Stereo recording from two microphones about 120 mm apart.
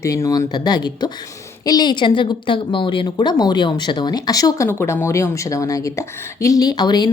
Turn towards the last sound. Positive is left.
turn(degrees=35)  # may be behind; listen again after turning